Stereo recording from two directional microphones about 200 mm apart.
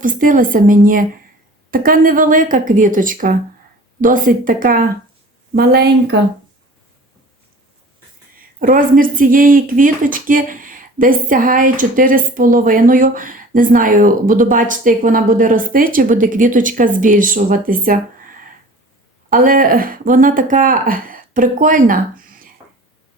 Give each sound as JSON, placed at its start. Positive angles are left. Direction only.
{"t": 0.0, "sound": "speech", "side_deg": -40}
{"t": 8.6, "sound": "speech", "side_deg": -45}